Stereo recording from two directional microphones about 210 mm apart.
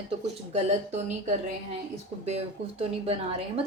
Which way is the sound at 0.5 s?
35° right (ahead or behind).